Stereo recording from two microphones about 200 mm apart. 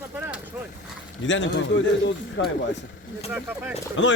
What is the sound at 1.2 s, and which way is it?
A man's voice, 65° left (ahead or behind).